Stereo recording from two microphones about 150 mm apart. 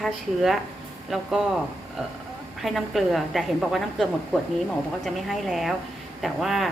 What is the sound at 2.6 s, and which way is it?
A woman's voice, centre (ahead or behind).